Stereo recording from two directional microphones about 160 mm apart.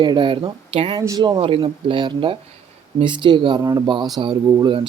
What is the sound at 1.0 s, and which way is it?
A man's voice, 20° right (ahead or behind).